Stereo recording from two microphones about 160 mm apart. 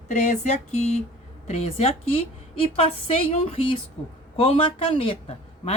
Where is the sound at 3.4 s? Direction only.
35° left (ahead or behind).